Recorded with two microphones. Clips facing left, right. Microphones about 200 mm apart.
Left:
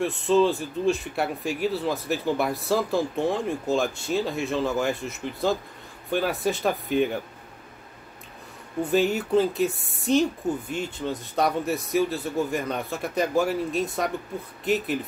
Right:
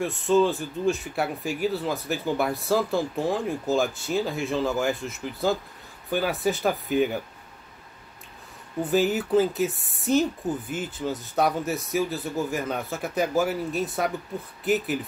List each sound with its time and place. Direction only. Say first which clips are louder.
0.0 s speech: left 1 dB; centre (ahead or behind)
8.9 s speech: even; centre (ahead or behind)